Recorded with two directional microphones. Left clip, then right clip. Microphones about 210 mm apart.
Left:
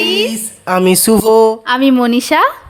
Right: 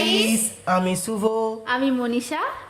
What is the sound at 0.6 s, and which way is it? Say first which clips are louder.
Speech: left 12 dB; 40° left (ahead or behind).